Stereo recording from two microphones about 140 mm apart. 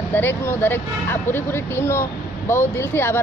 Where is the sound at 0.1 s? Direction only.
15° left (ahead or behind).